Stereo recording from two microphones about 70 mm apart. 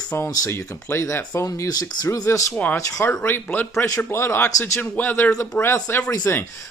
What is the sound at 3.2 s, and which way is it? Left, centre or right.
Speech, left.